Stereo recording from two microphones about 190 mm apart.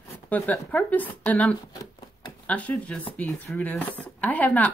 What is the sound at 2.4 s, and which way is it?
Speech, 5° left (ahead or behind).